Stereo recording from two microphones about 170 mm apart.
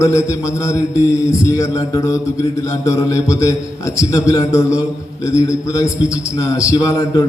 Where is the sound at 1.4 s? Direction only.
20° left (ahead or behind).